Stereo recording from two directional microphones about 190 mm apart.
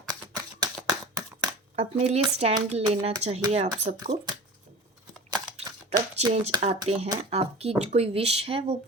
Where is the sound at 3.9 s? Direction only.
45° right (ahead or behind).